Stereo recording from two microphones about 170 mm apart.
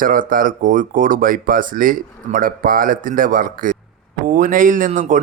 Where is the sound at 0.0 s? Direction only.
55° right (ahead or behind).